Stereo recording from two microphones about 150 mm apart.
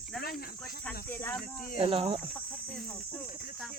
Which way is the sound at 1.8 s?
35° right (ahead or behind).